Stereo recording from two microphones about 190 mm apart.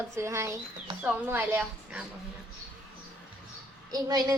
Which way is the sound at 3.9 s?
20° right (ahead or behind).